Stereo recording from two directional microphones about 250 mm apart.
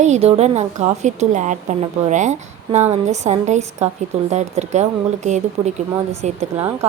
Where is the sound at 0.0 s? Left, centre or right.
Right.